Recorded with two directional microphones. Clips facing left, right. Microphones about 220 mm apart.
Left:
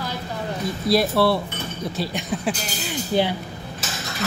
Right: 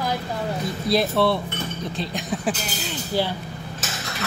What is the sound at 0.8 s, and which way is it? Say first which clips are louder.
Speech: left 2 dB; 5° left (ahead or behind).